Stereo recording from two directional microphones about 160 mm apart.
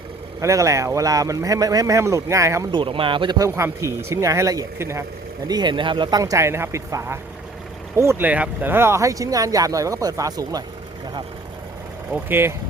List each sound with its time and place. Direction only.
0.3 s speech: 20° right (ahead or behind)
2.7 s speech: 35° right (ahead or behind)
12.1 s speech: 15° right (ahead or behind)